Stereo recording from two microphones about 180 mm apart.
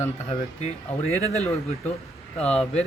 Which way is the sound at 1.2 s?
35° left (ahead or behind).